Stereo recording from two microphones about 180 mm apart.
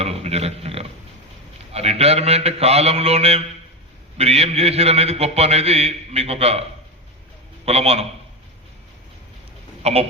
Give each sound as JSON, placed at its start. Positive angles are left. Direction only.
{"t": 0.0, "sound": "a sound", "side_deg": -35}
{"t": 1.7, "sound": "a man's voice", "side_deg": -35}
{"t": 9.8, "sound": "speech", "side_deg": -35}